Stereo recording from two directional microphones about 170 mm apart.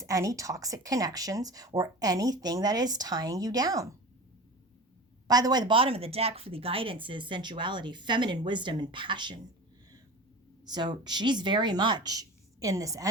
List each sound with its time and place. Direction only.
0.0 s speech: 20° right (ahead or behind)
5.3 s speech: 25° right (ahead or behind)
10.7 s speech: 25° right (ahead or behind)